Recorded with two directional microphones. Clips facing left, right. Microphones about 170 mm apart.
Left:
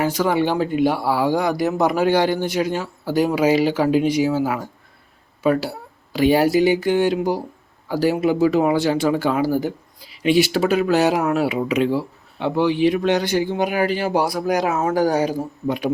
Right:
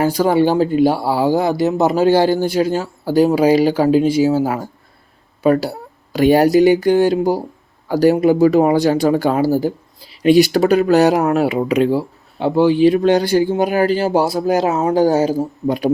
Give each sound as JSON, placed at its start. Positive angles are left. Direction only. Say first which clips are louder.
{"t": 0.0, "sound": "speech", "louder": "right 5 dB", "side_deg": -35}